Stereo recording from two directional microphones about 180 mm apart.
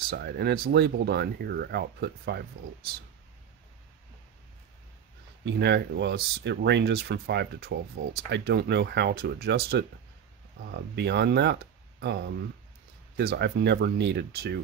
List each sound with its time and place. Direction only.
0.1 s speech: 65° right (ahead or behind)
5.4 s speech: 75° right (ahead or behind)
13.2 s speech: 65° right (ahead or behind)